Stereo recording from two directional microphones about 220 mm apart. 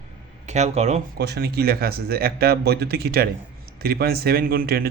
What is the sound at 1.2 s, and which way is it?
Speech, 45° right (ahead or behind).